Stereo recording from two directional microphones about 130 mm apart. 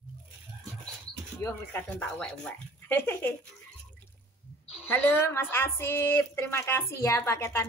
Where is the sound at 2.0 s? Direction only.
5° left (ahead or behind).